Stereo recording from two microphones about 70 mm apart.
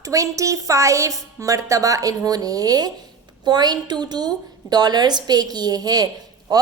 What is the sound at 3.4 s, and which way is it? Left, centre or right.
A woman's voice, right.